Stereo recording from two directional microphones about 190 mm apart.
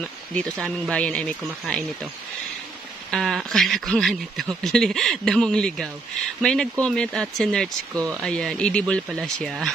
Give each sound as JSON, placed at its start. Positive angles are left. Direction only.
{"t": 0.3, "sound": "speech", "side_deg": 5}
{"t": 3.1, "sound": "speech", "side_deg": 0}